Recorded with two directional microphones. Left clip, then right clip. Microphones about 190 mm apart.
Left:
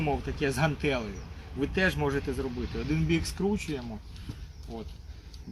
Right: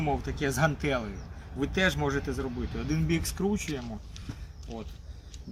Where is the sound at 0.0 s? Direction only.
10° right (ahead or behind).